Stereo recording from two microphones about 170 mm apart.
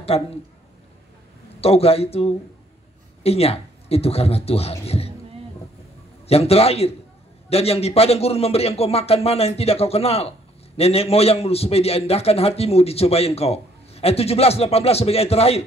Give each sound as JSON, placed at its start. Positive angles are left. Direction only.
{"t": 0.1, "sound": "a man's voice", "side_deg": 35}
{"t": 1.6, "sound": "a man's voice", "side_deg": 35}
{"t": 6.2, "sound": "a man's voice", "side_deg": 35}